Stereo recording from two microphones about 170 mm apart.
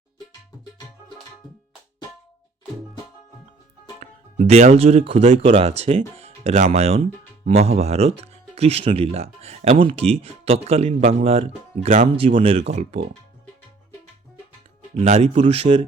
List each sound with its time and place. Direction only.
4.0 s speech: 40° right (ahead or behind)
14.9 s speech: 40° right (ahead or behind)